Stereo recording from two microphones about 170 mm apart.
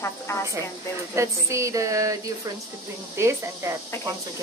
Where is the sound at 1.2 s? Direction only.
15° right (ahead or behind).